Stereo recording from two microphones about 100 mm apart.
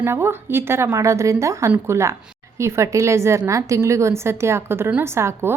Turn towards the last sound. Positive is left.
turn(degrees=-25)  # may be behind; listen again after turning